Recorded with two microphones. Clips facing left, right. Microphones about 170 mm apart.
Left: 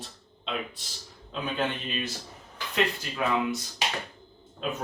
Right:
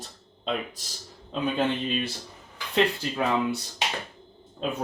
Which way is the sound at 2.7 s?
30° right (ahead or behind).